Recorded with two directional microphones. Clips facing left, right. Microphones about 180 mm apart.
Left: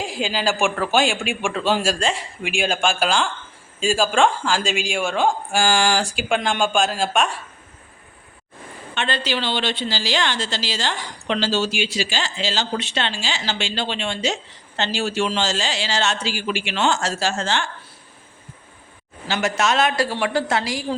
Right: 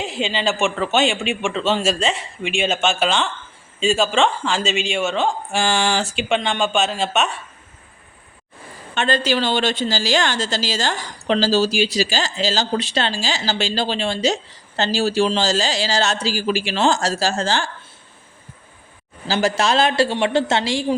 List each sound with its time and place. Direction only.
0.1 s a man's voice: 5° left (ahead or behind)
1.4 s a man's voice: 10° left (ahead or behind)
5.1 s speech: 10° left (ahead or behind)
9.0 s a woman's voice: 45° right (ahead or behind)
19.3 s a woman's voice: 30° right (ahead or behind)